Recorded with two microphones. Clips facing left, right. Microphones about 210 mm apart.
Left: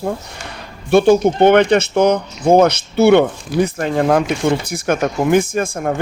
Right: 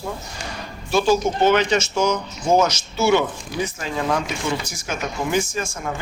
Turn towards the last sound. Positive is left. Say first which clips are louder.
# left 8 dB
turn(degrees=55)  # may be behind; listen again after turning